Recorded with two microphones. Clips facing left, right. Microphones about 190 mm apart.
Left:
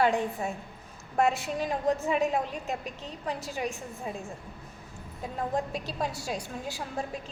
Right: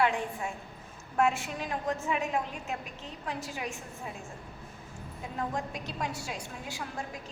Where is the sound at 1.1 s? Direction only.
35° left (ahead or behind).